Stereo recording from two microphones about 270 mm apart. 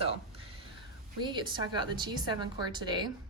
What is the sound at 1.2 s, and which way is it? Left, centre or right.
A woman's voice, centre.